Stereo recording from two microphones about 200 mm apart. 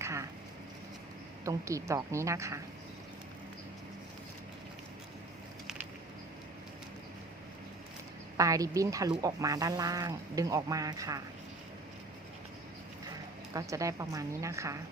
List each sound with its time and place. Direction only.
0.0 s a sound: 15° right (ahead or behind)
1.5 s speech: 15° right (ahead or behind)
8.4 s speech: 15° right (ahead or behind)
13.5 s speech: 15° right (ahead or behind)